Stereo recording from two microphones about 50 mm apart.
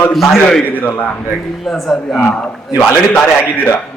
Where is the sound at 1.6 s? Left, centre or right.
Centre.